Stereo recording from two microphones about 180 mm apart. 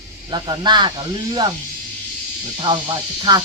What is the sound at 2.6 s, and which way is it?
Speech, 25° right (ahead or behind).